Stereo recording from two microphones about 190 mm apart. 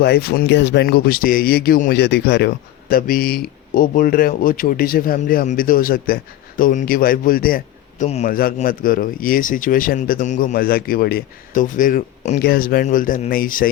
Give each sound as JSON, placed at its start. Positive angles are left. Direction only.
{"t": 0.0, "sound": "speech", "side_deg": 55}
{"t": 2.9, "sound": "a man's voice", "side_deg": 50}
{"t": 8.0, "sound": "a man's voice", "side_deg": 35}
{"t": 8.3, "sound": "speech", "side_deg": 50}